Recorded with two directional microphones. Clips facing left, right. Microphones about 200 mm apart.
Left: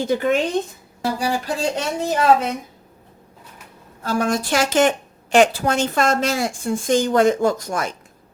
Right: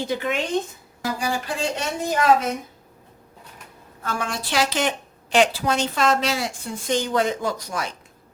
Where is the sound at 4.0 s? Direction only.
35° left (ahead or behind).